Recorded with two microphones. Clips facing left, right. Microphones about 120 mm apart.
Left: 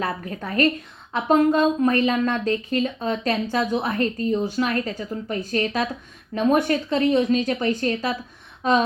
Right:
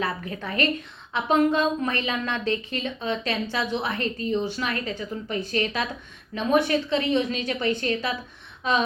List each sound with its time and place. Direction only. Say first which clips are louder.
0.0 s a woman's voice: left 2 dB; 40° left (ahead or behind)